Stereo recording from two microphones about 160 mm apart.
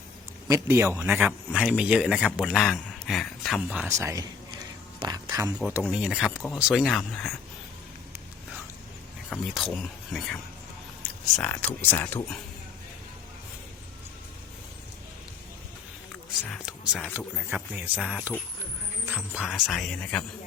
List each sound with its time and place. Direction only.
0.4 s a man's voice: 20° right (ahead or behind)
3.8 s speech: 20° right (ahead or behind)
5.5 s a man's voice: 10° right (ahead or behind)
9.3 s a man's voice: centre (ahead or behind)
11.4 s speech: 10° left (ahead or behind)
16.5 s speech: centre (ahead or behind)
17.2 s a man's voice: 10° right (ahead or behind); by 20.2 s 5° left (ahead or behind)